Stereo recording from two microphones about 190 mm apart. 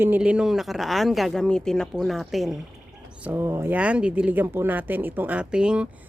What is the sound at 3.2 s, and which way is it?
Speech, 10° right (ahead or behind).